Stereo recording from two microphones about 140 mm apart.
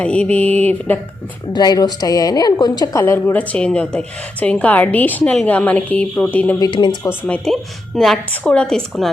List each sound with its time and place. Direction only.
0.0 s a woman's voice: 10° left (ahead or behind)
1.5 s a woman's voice: 30° left (ahead or behind); by 6.6 s 10° left (ahead or behind)
6.6 s speech: 35° left (ahead or behind)
7.0 s a woman's voice: 10° left (ahead or behind)